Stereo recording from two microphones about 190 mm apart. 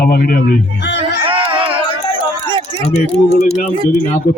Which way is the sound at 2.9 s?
35° left (ahead or behind).